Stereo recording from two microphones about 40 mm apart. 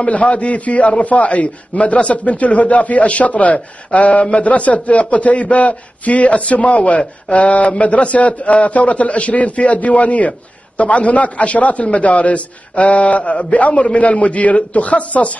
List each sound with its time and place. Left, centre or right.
0.0 s a man's voice: left